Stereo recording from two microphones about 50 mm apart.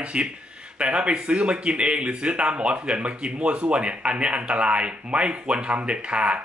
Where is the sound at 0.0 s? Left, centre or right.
Right.